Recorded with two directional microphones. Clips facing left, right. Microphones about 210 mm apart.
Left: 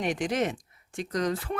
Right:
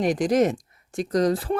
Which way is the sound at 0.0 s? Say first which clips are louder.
Right 7 dB; 40° right (ahead or behind).